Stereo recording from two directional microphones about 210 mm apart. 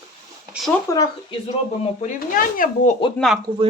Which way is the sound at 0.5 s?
Centre (ahead or behind).